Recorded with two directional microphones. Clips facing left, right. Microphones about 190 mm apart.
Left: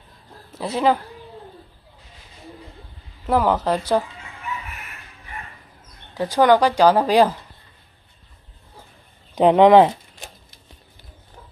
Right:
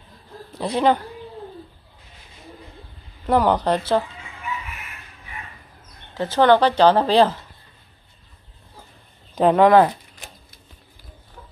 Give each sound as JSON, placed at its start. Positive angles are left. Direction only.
{"t": 0.5, "sound": "a man's voice", "side_deg": 5}
{"t": 3.3, "sound": "speech", "side_deg": 5}
{"t": 6.1, "sound": "speech", "side_deg": 10}
{"t": 9.3, "sound": "speech", "side_deg": 15}